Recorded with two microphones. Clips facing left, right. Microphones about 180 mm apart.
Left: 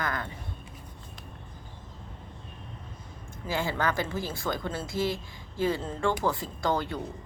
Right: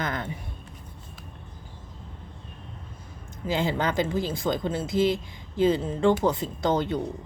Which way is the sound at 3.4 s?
20° right (ahead or behind).